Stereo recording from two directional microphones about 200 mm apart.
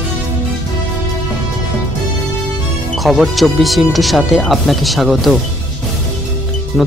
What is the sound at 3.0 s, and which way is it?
Speech, centre (ahead or behind).